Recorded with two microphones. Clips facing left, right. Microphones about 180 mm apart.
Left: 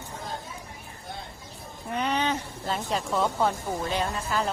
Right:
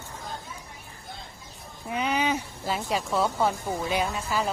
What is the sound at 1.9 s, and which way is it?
Speech, 5° right (ahead or behind).